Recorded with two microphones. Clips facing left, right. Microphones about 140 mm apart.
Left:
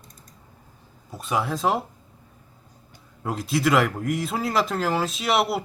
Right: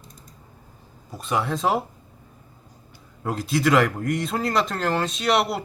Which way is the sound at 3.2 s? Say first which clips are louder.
Right 1 dB; centre (ahead or behind).